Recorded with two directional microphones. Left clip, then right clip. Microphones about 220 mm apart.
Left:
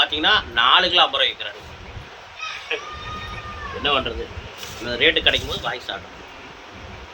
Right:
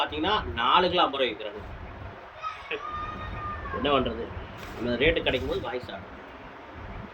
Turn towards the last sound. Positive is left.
turn(degrees=-5)  # may be behind; listen again after turning